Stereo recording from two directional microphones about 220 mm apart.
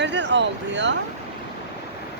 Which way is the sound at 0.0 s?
50° right (ahead or behind).